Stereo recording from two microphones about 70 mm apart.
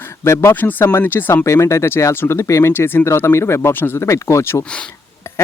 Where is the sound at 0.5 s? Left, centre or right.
Left.